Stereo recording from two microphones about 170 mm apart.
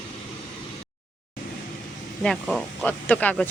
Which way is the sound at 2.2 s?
Centre (ahead or behind).